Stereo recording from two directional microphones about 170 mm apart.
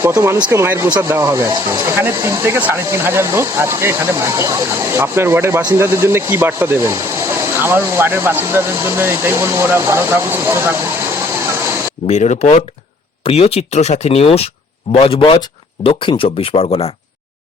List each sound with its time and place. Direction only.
0.0 s speech: 15° right (ahead or behind)
12.0 s speech: 40° left (ahead or behind)